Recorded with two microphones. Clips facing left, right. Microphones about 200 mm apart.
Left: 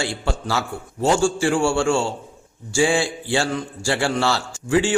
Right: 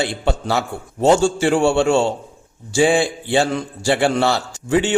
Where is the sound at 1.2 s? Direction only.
20° right (ahead or behind).